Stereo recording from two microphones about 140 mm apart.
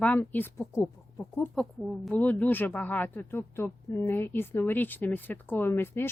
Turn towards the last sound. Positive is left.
turn(degrees=15)  # may be behind; listen again after turning